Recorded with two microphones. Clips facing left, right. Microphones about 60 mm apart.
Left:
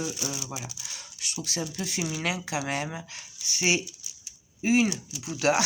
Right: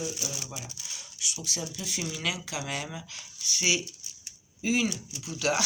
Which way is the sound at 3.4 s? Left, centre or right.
Left.